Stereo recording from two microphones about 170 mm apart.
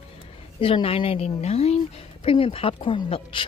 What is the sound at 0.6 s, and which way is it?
A woman's voice, 30° left (ahead or behind).